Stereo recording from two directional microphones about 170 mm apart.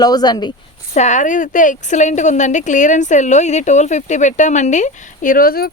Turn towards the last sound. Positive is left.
turn(degrees=60)  # may be behind; listen again after turning